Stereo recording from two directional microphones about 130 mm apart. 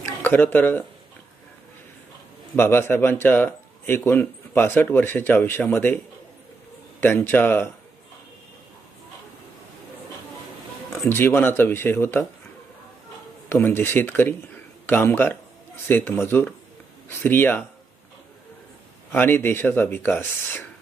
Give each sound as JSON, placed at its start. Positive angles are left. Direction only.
{"t": 0.0, "sound": "speech", "side_deg": 15}
{"t": 2.6, "sound": "speech", "side_deg": 15}
{"t": 7.0, "sound": "speech", "side_deg": 15}
{"t": 11.0, "sound": "speech", "side_deg": 20}
{"t": 13.5, "sound": "speech", "side_deg": 15}
{"t": 19.1, "sound": "speech", "side_deg": 15}